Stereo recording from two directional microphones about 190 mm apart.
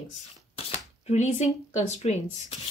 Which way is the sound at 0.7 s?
35° left (ahead or behind).